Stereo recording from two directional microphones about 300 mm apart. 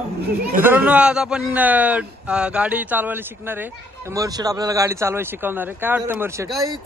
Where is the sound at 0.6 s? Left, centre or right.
Centre.